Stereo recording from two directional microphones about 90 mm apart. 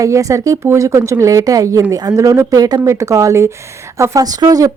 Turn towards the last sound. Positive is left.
turn(degrees=-45)  # may be behind; listen again after turning